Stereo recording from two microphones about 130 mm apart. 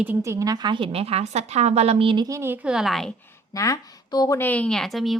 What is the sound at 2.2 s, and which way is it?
Speech, 20° right (ahead or behind).